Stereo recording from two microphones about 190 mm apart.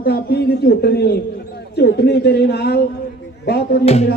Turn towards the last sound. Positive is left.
turn(degrees=35)  # may be behind; listen again after turning